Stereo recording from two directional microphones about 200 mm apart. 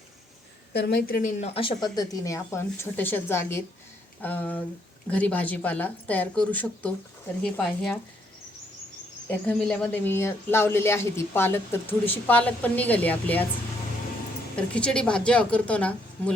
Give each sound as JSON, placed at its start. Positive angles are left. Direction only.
{"t": 0.7, "sound": "a woman's voice", "side_deg": 55}
{"t": 9.5, "sound": "speech", "side_deg": 5}
{"t": 14.5, "sound": "a woman's voice", "side_deg": 5}